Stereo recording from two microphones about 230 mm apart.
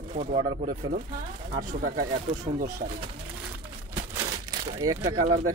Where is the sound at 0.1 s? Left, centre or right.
Right.